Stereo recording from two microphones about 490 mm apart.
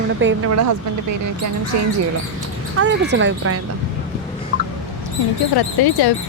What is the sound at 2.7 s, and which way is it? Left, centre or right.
Speech, right.